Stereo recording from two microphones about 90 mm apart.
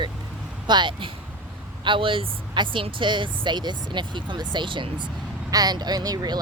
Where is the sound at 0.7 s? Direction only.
60° right (ahead or behind).